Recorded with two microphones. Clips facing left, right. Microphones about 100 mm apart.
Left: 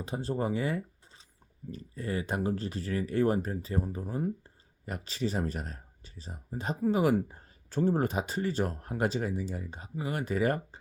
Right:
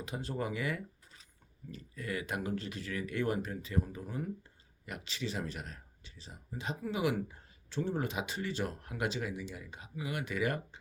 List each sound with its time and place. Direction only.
0.0 s speech: 35° left (ahead or behind)